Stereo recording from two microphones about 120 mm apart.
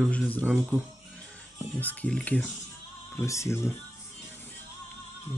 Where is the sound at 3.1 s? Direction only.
25° left (ahead or behind).